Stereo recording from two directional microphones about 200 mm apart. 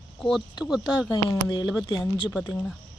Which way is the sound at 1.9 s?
20° left (ahead or behind).